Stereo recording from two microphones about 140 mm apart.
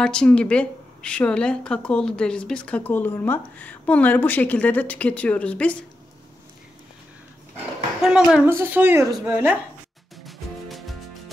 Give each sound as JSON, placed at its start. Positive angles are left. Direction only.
{"t": 0.0, "sound": "speech", "side_deg": 5}
{"t": 8.0, "sound": "a woman's voice", "side_deg": -5}
{"t": 8.5, "sound": "speech", "side_deg": -15}
{"t": 10.2, "sound": "music", "side_deg": 0}